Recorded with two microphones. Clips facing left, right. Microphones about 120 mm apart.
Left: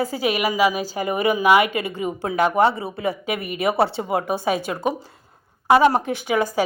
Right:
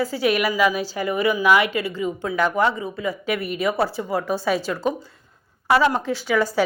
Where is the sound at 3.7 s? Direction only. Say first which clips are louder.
Left 3 dB; 25° left (ahead or behind).